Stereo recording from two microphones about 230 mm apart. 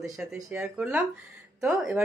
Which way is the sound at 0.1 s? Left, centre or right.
Centre.